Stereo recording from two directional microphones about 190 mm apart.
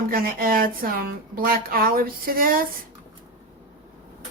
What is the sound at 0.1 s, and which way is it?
Speech, 50° right (ahead or behind).